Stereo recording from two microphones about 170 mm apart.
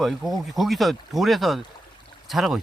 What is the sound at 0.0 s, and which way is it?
Speech, centre (ahead or behind).